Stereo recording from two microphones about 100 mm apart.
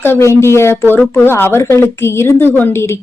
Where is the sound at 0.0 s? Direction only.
25° left (ahead or behind).